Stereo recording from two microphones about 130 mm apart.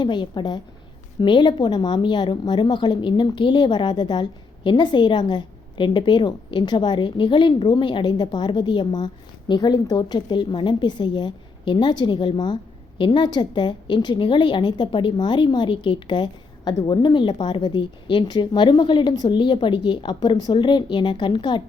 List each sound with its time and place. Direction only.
0.0 s a woman's voice: 35° left (ahead or behind)